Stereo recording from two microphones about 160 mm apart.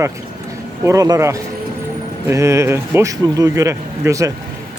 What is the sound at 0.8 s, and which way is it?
Speech, 20° right (ahead or behind).